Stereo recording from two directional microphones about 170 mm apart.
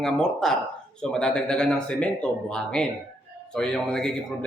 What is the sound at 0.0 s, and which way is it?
A man's voice, 5° left (ahead or behind).